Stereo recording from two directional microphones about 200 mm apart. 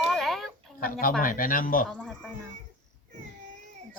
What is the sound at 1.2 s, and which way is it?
Speech, 45° left (ahead or behind).